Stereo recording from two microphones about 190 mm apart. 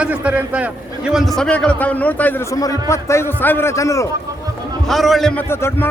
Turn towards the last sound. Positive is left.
turn(degrees=15)  # may be behind; listen again after turning